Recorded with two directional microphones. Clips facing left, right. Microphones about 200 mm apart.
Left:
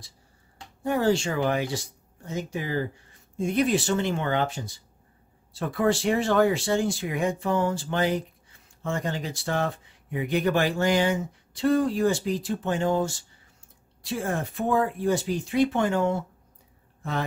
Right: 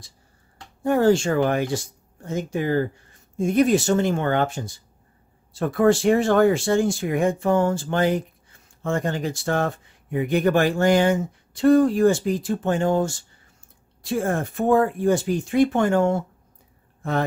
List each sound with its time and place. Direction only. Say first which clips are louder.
0.8 s speech: right 5 dB; 50° right (ahead or behind)